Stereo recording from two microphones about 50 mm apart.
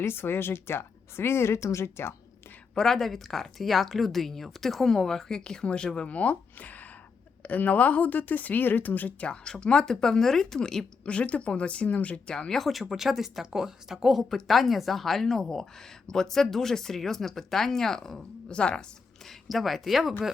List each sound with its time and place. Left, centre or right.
0.0 s speech: left
2.7 s speech: centre
6.1 s speech: left
9.2 s speech: centre
11.0 s speech: left
12.3 s speech: centre
19.2 s speech: centre